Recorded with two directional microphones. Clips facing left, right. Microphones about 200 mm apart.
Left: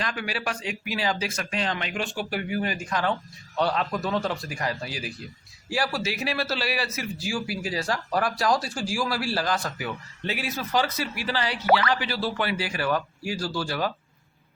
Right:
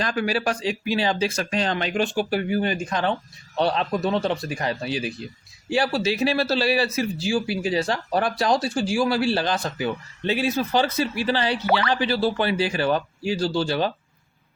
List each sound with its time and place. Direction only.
0.0 s speech: 40° right (ahead or behind)